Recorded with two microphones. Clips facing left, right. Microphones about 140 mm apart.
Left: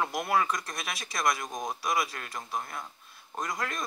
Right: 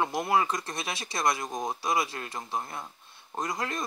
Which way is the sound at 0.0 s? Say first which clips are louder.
Right 2 dB; 25° right (ahead or behind).